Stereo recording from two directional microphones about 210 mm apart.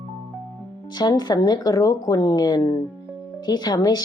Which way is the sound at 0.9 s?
20° left (ahead or behind).